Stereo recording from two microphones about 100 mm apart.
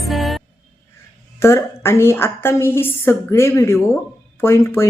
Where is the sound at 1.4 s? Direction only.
25° left (ahead or behind).